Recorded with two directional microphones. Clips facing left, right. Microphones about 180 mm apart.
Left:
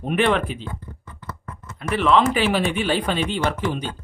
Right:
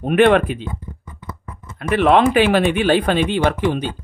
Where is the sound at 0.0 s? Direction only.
55° right (ahead or behind).